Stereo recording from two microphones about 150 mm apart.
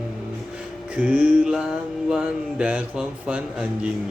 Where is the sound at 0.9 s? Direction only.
10° right (ahead or behind).